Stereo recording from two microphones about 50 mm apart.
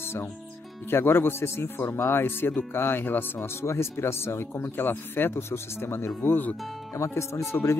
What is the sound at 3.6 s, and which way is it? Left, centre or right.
Speech, left.